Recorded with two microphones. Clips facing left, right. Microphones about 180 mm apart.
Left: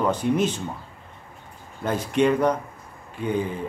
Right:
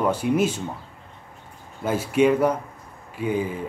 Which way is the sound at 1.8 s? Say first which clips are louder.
Right 2 dB; 5° right (ahead or behind).